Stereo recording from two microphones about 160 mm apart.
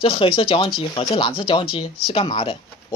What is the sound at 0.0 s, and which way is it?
Speech, 35° left (ahead or behind).